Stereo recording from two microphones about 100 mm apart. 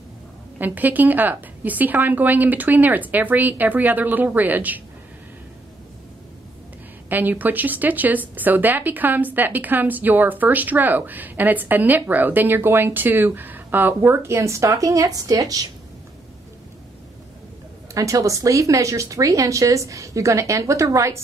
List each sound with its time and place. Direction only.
0.6 s speech: 15° right (ahead or behind)
7.1 s speech: 20° right (ahead or behind); by 15.5 s 40° right (ahead or behind)
17.9 s speech: 35° right (ahead or behind)